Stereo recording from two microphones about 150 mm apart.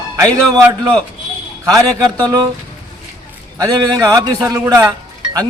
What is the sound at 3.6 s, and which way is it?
A man's voice, 25° right (ahead or behind).